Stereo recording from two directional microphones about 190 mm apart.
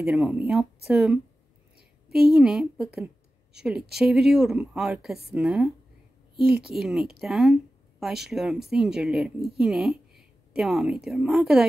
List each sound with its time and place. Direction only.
0.0 s speech: 5° right (ahead or behind)
1.8 s a sound: 55° right (ahead or behind)
2.3 s speech: centre (ahead or behind)
4.0 s speech: 5° right (ahead or behind)
6.3 s a woman's voice: 55° right (ahead or behind)
6.7 s speech: centre (ahead or behind)